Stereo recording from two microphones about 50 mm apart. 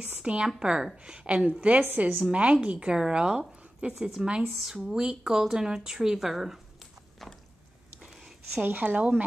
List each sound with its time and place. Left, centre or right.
0.2 s a woman's voice: centre
8.0 s a sound: centre
8.6 s speech: right